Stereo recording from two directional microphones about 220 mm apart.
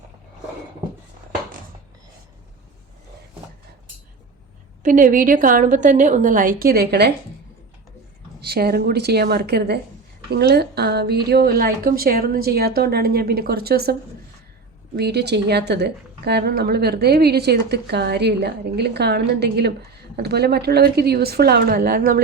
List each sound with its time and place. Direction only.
4.8 s a woman's voice: 35° right (ahead or behind)
8.4 s a woman's voice: 45° right (ahead or behind)
14.9 s a woman's voice: 50° right (ahead or behind)